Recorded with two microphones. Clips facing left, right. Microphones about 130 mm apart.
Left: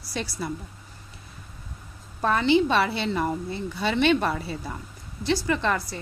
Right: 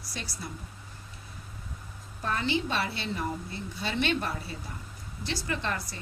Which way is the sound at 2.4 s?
90° left.